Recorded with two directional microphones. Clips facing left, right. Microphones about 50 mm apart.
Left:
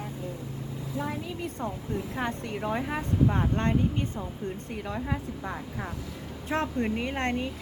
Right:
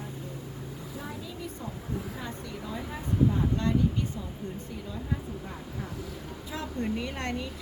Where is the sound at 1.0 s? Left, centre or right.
Left.